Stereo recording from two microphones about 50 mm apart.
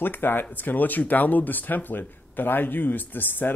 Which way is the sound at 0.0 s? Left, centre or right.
Left.